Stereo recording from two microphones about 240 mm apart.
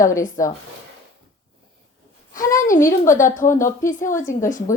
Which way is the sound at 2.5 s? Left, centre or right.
Left.